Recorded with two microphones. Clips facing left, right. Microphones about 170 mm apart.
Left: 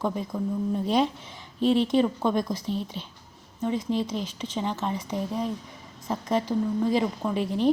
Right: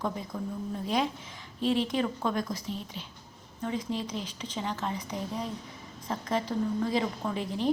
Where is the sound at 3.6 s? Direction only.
20° left (ahead or behind).